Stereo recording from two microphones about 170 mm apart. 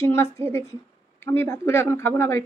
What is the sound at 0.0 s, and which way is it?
A woman's voice, 15° left (ahead or behind).